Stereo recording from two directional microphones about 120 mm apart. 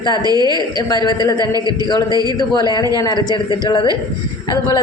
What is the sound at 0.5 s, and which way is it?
A woman's voice, 35° left (ahead or behind).